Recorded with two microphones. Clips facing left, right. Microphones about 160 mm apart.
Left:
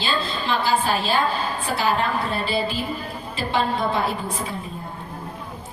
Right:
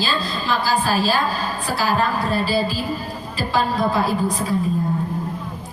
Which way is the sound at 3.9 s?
35° right (ahead or behind).